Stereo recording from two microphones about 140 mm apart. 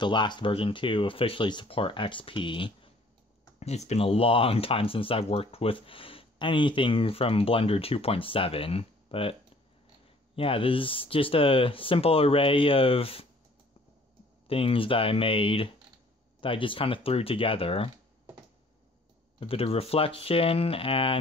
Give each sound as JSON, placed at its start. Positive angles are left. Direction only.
{"t": 0.0, "sound": "speech", "side_deg": 35}
{"t": 3.5, "sound": "speech", "side_deg": 50}
{"t": 14.5, "sound": "speech", "side_deg": 40}
{"t": 19.4, "sound": "speech", "side_deg": 45}